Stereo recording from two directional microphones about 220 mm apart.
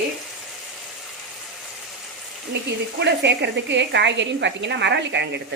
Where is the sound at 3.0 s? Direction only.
50° right (ahead or behind).